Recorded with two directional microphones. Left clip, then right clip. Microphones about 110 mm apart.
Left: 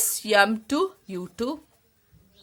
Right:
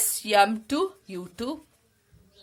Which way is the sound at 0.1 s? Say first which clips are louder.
Left 1 dB; 40° left (ahead or behind).